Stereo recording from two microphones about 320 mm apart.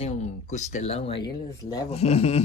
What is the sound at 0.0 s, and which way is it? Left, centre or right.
Speech, left.